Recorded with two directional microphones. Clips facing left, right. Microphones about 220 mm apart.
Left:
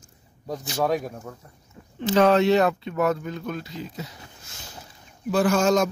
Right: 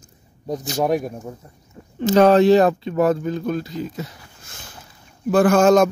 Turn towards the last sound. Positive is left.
turn(degrees=-55)  # may be behind; listen again after turning